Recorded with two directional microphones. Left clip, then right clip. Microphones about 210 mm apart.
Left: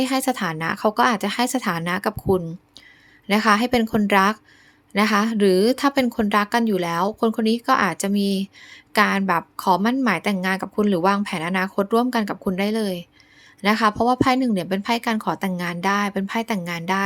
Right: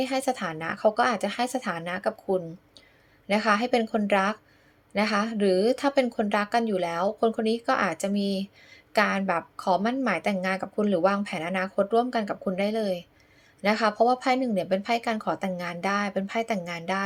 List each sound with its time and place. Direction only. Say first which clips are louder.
0.0 s a woman's voice: left 5 dB; 15° left (ahead or behind)